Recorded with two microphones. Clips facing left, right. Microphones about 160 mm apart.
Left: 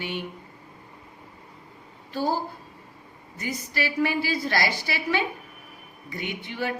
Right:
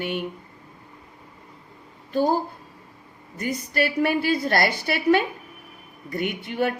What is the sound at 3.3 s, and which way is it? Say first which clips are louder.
A woman's voice: right 5 dB; 55° right (ahead or behind).